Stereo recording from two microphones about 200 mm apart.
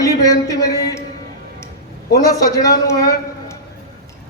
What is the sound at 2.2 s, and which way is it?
A man's voice, 15° left (ahead or behind).